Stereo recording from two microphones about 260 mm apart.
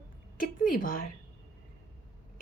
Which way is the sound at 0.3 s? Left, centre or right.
Left.